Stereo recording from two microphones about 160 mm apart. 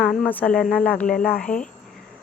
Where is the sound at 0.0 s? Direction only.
5° left (ahead or behind).